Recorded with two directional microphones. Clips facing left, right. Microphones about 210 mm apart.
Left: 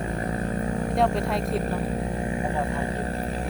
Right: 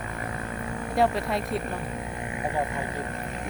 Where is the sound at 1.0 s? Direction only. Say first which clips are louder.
Right 1 dB; centre (ahead or behind).